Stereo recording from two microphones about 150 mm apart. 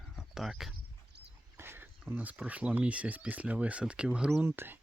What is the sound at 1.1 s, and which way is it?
Dog, 90° right.